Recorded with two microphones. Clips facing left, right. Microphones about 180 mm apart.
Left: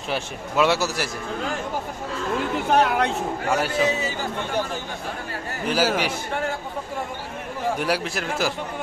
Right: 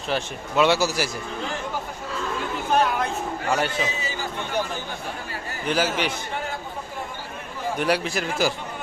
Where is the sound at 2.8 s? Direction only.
70° left (ahead or behind).